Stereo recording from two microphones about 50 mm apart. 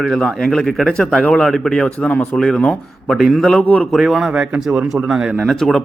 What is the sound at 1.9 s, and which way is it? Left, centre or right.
Speech, left.